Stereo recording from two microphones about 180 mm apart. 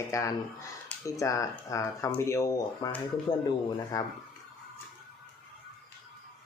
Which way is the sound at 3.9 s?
20° left (ahead or behind).